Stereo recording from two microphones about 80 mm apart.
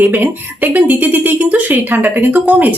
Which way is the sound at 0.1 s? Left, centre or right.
Right.